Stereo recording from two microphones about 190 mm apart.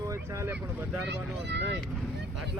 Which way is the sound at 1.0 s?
65° right (ahead or behind).